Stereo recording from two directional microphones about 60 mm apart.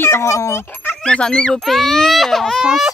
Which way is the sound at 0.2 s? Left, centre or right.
Left.